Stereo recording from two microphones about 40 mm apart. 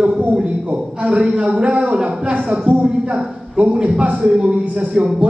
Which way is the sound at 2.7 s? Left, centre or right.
Right.